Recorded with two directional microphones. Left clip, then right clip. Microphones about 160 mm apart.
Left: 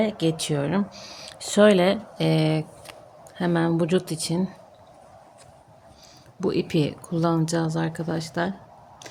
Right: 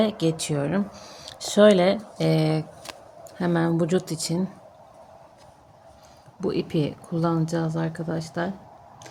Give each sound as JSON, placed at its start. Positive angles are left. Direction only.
{"t": 0.2, "sound": "speech", "side_deg": 10}
{"t": 6.4, "sound": "speech", "side_deg": 30}